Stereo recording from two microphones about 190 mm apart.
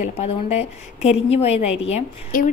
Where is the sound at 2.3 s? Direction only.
50° left (ahead or behind).